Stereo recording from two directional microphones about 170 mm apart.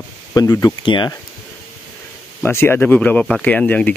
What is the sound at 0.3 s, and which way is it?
Speech, 20° left (ahead or behind).